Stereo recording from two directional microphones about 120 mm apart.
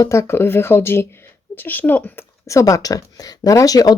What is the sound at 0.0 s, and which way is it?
Speech, 25° left (ahead or behind).